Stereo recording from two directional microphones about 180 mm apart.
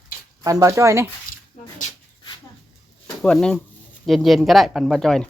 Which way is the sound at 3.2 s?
5° left (ahead or behind).